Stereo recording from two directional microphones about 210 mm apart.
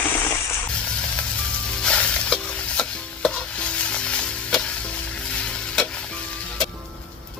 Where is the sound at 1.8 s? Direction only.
5° left (ahead or behind).